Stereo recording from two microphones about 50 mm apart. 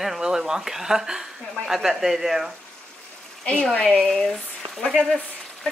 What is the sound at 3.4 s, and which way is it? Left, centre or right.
Speech, centre.